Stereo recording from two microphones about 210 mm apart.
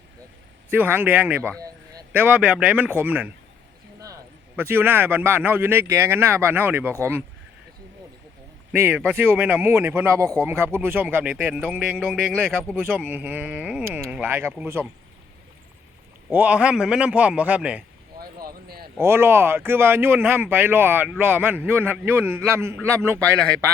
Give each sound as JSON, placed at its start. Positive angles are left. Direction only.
{"t": 0.7, "sound": "speech", "side_deg": -10}
{"t": 8.7, "sound": "speech", "side_deg": -10}
{"t": 12.8, "sound": "speech", "side_deg": -10}
{"t": 16.3, "sound": "a man's voice", "side_deg": -5}
{"t": 18.2, "sound": "a sound", "side_deg": -45}
{"t": 18.9, "sound": "speech", "side_deg": -10}